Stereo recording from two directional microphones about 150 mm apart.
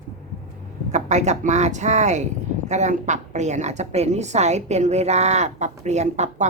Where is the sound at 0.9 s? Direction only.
50° right (ahead or behind).